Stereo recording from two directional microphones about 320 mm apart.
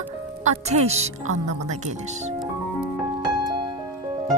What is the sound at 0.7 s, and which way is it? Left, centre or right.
Speech, centre.